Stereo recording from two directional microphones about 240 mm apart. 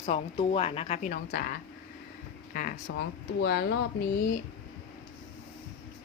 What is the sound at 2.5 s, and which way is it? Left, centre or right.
Speech, left.